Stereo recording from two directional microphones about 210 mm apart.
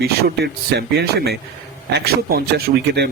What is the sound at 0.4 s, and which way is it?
Speech, 50° right (ahead or behind).